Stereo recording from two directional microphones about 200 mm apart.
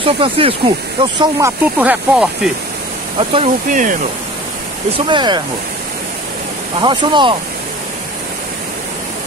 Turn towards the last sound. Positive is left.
turn(degrees=-25)  # may be behind; listen again after turning